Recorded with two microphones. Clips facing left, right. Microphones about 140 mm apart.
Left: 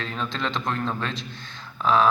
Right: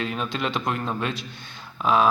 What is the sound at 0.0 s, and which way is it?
A man's voice, 15° right (ahead or behind).